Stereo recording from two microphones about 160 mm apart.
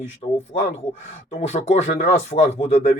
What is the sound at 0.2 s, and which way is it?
Speech, 45° left (ahead or behind).